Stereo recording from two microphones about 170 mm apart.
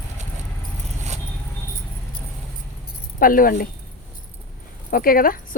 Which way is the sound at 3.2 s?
55° left (ahead or behind).